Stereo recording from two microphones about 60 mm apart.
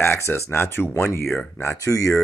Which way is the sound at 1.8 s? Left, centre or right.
Left.